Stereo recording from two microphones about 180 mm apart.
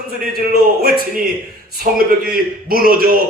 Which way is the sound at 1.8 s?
55° right (ahead or behind).